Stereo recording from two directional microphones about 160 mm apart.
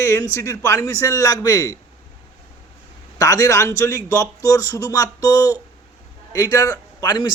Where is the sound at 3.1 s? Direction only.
20° left (ahead or behind).